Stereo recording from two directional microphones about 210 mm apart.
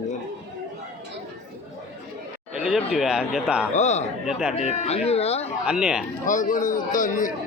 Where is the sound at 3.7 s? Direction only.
35° left (ahead or behind).